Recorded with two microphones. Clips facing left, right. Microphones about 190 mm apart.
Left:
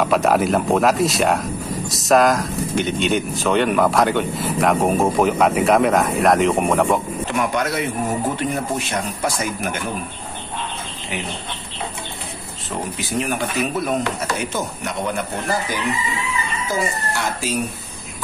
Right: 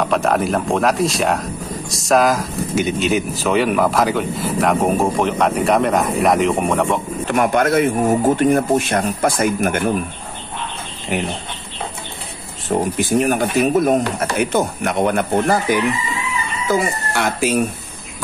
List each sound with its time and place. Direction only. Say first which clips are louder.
0.0 s speech: left 1 dB; 5° left (ahead or behind)
7.2 s speech: right 7 dB; 50° right (ahead or behind)
12.6 s speech: right 9 dB; 50° right (ahead or behind)
16.6 s speech: right 6 dB; 60° right (ahead or behind)